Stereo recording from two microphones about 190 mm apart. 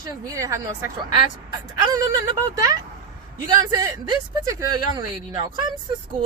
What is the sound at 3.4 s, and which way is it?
Speech, 20° right (ahead or behind).